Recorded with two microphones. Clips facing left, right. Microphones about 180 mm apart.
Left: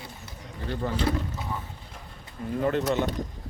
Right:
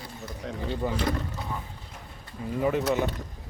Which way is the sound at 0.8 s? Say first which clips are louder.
Left 1 dB; 10° right (ahead or behind).